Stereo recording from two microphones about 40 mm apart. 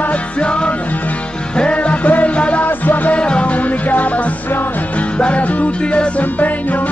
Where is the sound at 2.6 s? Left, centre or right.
Left.